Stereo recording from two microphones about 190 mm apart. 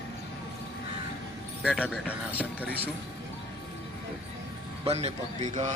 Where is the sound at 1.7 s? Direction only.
5° left (ahead or behind).